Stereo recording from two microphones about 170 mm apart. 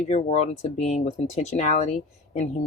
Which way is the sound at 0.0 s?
40° left (ahead or behind).